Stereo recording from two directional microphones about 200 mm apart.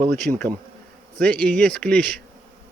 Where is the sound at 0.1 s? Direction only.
35° right (ahead or behind).